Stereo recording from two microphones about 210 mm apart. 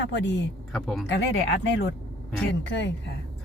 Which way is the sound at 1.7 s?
55° left (ahead or behind).